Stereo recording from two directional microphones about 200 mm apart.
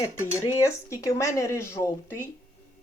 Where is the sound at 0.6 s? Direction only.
15° left (ahead or behind).